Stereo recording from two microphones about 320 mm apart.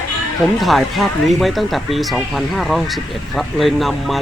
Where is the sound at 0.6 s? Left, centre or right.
Centre.